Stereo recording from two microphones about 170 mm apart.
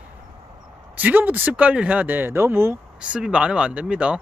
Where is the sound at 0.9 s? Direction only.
10° right (ahead or behind).